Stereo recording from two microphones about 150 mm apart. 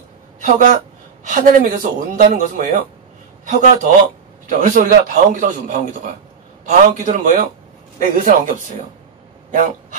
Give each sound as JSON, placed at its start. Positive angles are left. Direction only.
{"t": 0.4, "sound": "speech", "side_deg": -55}
{"t": 1.2, "sound": "a man's voice", "side_deg": -65}
{"t": 2.2, "sound": "a man's voice", "side_deg": -60}